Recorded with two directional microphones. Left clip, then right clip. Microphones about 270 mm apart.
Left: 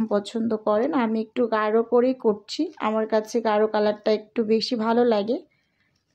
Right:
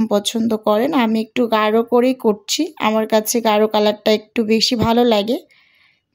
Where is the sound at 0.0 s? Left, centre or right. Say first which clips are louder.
Right 7 dB; right.